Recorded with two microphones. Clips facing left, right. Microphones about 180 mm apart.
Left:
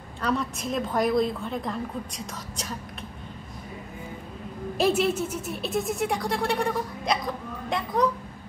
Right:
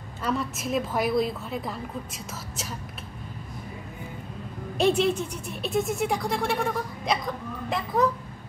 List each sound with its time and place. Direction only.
0.2 s a woman's voice: 5° right (ahead or behind)
4.7 s a woman's voice: 5° left (ahead or behind)